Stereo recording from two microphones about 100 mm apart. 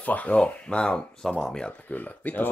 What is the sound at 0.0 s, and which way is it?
Speech, 15° left (ahead or behind).